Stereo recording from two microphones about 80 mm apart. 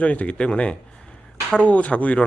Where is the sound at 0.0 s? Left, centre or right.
Centre.